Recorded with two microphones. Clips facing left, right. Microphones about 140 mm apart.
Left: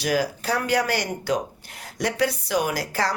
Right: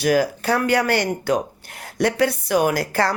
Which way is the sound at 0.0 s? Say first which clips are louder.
Right 5 dB; 50° right (ahead or behind).